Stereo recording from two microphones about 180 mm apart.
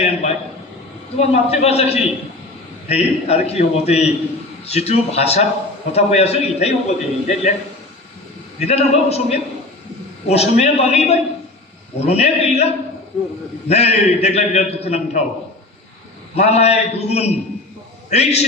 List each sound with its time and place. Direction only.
0.0 s a man's voice: 40° left (ahead or behind)
8.5 s a man's voice: 35° left (ahead or behind)
16.3 s a man's voice: 35° left (ahead or behind)